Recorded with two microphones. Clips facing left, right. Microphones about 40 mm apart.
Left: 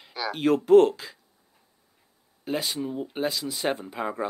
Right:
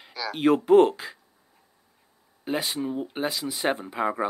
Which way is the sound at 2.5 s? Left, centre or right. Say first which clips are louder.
Right 1 dB; centre.